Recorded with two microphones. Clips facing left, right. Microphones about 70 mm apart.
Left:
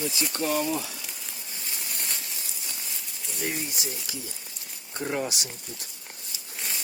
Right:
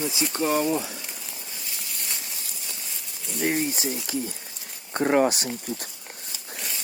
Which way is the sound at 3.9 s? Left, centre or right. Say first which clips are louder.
Right 8 dB; right.